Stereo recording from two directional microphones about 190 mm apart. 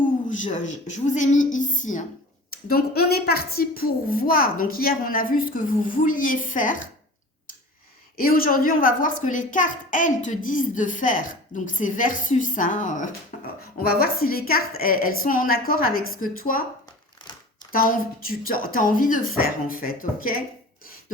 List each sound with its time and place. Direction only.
0.3 s a woman's voice: 40° left (ahead or behind)
2.6 s a woman's voice: 55° left (ahead or behind)
8.1 s a woman's voice: 50° left (ahead or behind)
13.3 s a sound: 40° left (ahead or behind)
14.0 s a woman's voice: 50° left (ahead or behind)
17.7 s a woman's voice: 50° left (ahead or behind)